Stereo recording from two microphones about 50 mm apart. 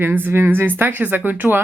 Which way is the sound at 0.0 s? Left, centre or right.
Right.